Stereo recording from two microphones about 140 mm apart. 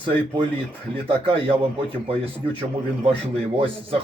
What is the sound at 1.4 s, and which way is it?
Speech, 40° right (ahead or behind).